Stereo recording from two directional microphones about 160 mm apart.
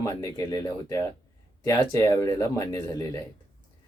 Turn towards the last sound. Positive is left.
turn(degrees=20)  # may be behind; listen again after turning